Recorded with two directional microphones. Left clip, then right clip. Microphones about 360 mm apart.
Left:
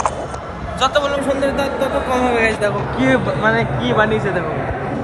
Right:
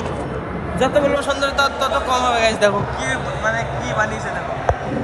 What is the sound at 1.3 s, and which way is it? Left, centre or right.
Speech, right.